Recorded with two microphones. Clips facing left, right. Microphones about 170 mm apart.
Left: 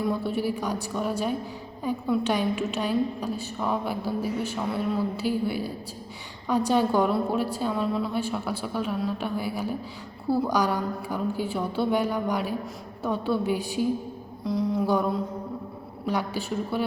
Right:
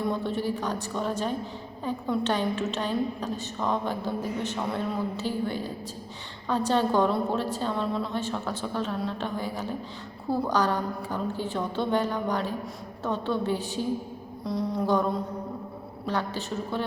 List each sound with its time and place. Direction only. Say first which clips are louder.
0.0 s a woman's voice: left 2 dB; 10° left (ahead or behind)
14.4 s a sound: left 2 dB; centre (ahead or behind)
16.0 s a woman's voice: left 2 dB; 10° left (ahead or behind)